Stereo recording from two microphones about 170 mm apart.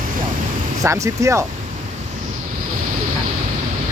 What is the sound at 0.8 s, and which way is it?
Speech, 20° right (ahead or behind).